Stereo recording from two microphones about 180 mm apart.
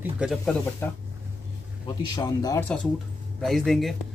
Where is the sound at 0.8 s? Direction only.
15° left (ahead or behind).